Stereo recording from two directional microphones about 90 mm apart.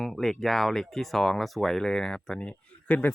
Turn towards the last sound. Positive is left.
turn(degrees=15)  # may be behind; listen again after turning